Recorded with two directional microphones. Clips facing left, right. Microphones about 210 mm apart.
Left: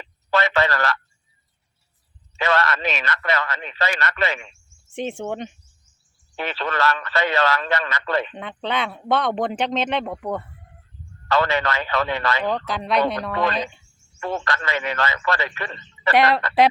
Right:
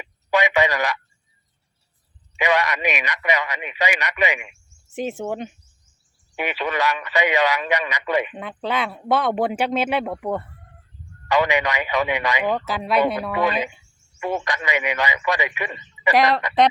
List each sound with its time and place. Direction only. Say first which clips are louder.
0.0 s a sound: right 1 dB; 15° right (ahead or behind)
2.3 s speech: right 1 dB; 15° right (ahead or behind)
16.1 s speech: left 1 dB; centre (ahead or behind)